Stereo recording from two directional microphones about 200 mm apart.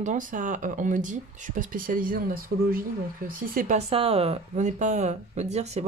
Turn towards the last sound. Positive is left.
turn(degrees=-35)  # may be behind; listen again after turning